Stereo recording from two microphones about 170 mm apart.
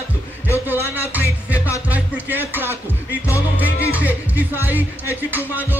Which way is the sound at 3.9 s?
10° right (ahead or behind).